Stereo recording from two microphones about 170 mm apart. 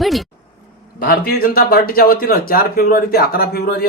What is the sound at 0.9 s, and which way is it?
A man's voice, 65° left (ahead or behind).